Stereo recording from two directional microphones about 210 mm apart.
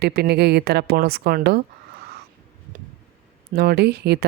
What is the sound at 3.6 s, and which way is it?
Speech, 50° right (ahead or behind).